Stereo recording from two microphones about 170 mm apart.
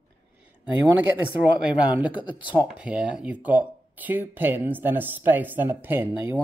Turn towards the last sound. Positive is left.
turn(degrees=-10)  # may be behind; listen again after turning